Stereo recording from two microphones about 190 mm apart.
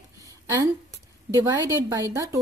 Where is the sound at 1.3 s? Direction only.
20° right (ahead or behind).